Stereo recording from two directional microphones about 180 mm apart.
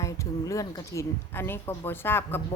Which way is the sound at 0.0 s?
15° left (ahead or behind).